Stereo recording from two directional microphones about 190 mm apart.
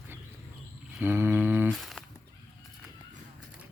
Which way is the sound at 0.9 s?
10° right (ahead or behind).